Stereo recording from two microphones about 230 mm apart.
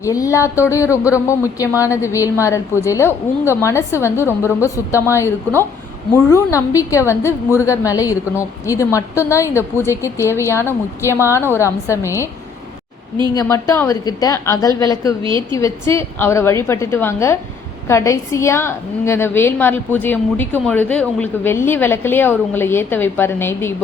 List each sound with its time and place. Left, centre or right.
0.0 s a woman's voice: centre
6.3 s a woman's voice: centre
13.3 s a woman's voice: centre